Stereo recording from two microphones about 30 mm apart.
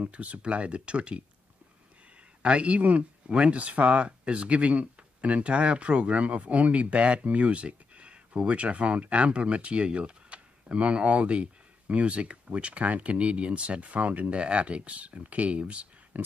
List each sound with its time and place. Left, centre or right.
0.1 s speech: right
2.4 s speech: right
3.3 s speech: right
3.5 s speech: right
14.3 s speech: right
16.1 s speech: right